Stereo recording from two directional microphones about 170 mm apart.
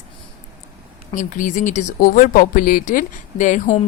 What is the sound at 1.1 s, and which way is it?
Speech, 50° left (ahead or behind).